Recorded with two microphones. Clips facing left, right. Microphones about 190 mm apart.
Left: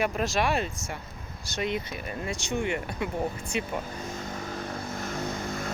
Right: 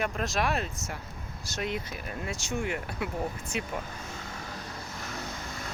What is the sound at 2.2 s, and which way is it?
Speech, 5° right (ahead or behind).